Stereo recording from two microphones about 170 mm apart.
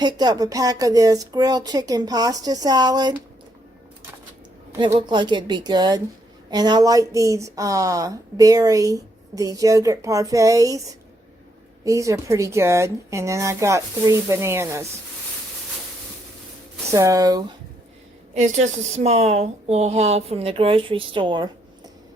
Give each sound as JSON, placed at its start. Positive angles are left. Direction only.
{"t": 0.0, "sound": "speech", "side_deg": -25}
{"t": 4.9, "sound": "speech", "side_deg": -25}
{"t": 11.9, "sound": "a woman's voice", "side_deg": -20}
{"t": 16.9, "sound": "speech", "side_deg": -20}
{"t": 18.3, "sound": "speech", "side_deg": -45}